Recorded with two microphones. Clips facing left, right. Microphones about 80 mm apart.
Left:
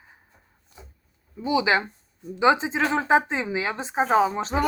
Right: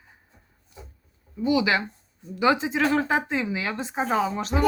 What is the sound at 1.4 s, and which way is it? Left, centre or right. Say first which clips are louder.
Speech: even; left.